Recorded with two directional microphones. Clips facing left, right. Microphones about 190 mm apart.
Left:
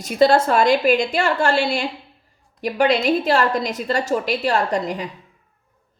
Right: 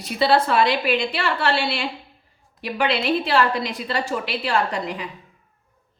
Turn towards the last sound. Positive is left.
turn(degrees=40)  # may be behind; listen again after turning